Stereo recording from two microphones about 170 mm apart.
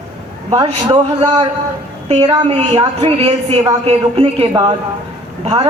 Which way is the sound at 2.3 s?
30° right (ahead or behind).